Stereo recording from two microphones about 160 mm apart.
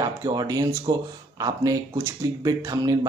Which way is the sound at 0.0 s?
25° right (ahead or behind).